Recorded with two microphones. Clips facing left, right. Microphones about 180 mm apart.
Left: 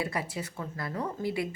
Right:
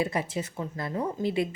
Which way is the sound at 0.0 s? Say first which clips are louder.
Right 4 dB; 20° right (ahead or behind).